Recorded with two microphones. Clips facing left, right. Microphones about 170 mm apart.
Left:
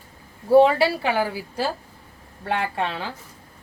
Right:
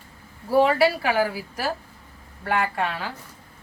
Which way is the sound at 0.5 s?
25° left (ahead or behind).